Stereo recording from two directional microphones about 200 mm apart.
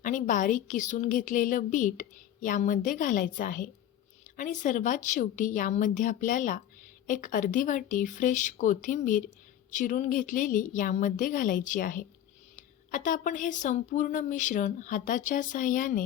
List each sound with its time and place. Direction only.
0.0 s a woman's voice: 40° left (ahead or behind)